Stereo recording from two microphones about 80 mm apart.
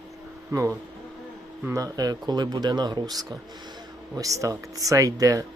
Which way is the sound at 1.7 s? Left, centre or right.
Right.